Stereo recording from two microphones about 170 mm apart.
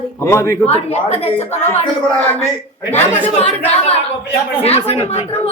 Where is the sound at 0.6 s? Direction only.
40° left (ahead or behind).